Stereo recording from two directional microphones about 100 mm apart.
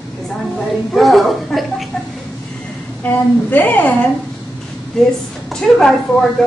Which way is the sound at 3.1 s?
15° left (ahead or behind).